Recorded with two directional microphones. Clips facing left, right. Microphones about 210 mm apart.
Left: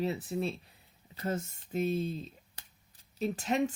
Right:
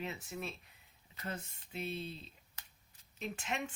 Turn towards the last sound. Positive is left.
turn(degrees=40)  # may be behind; listen again after turning